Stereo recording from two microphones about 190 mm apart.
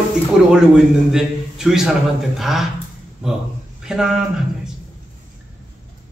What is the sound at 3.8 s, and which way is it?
Speech, 5° right (ahead or behind).